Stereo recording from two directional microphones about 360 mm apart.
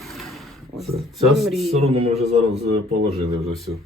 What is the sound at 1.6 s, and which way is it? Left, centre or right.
Speech, centre.